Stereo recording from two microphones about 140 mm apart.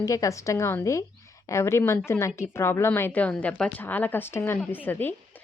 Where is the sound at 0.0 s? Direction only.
25° left (ahead or behind).